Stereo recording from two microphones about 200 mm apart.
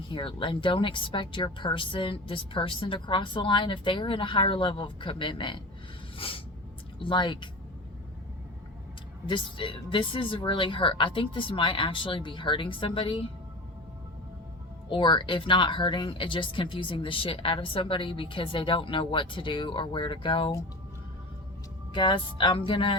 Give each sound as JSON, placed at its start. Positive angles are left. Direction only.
{"t": 0.1, "sound": "speech", "side_deg": 25}
{"t": 6.1, "sound": "a sound", "side_deg": 25}
{"t": 7.0, "sound": "speech", "side_deg": 25}
{"t": 9.3, "sound": "speech", "side_deg": 25}
{"t": 14.8, "sound": "speech", "side_deg": 25}
{"t": 21.9, "sound": "speech", "side_deg": 25}